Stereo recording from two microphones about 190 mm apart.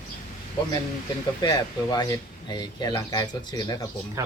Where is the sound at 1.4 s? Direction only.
20° left (ahead or behind).